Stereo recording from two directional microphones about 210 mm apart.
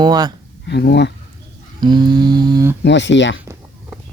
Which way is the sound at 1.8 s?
20° right (ahead or behind).